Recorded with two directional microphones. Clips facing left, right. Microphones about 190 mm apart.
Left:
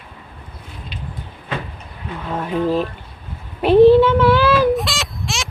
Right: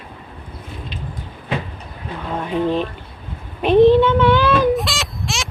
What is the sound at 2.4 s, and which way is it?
Speech, 5° left (ahead or behind).